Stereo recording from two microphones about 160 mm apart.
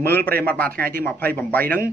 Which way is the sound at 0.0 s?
10° left (ahead or behind).